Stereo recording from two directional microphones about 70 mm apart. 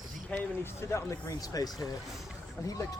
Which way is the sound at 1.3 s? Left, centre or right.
Left.